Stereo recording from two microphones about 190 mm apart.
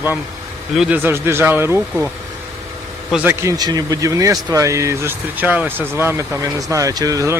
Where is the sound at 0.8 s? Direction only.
10° right (ahead or behind).